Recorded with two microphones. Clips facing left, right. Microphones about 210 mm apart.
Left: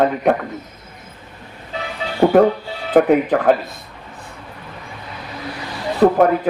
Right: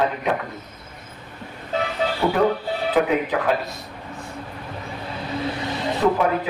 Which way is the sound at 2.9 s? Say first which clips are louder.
Left 8 dB; 50° left (ahead or behind).